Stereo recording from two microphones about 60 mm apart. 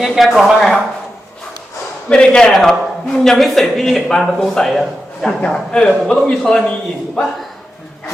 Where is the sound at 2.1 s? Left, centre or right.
Centre.